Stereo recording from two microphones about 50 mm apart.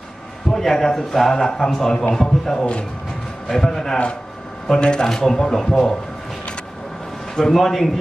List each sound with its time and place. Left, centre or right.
0.5 s speech: centre
7.3 s a man's voice: centre